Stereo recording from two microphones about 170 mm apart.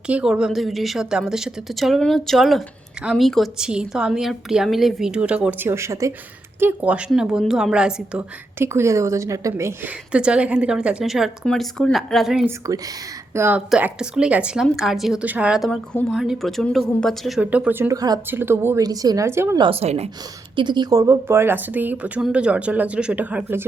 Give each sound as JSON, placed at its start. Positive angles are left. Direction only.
{"t": 0.1, "sound": "a woman's voice", "side_deg": -5}
{"t": 12.5, "sound": "a woman's voice", "side_deg": -20}
{"t": 19.5, "sound": "speech", "side_deg": -30}
{"t": 20.6, "sound": "speech", "side_deg": -25}